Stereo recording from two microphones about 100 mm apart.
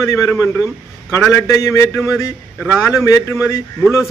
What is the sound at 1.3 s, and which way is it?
A man's voice, 30° left (ahead or behind).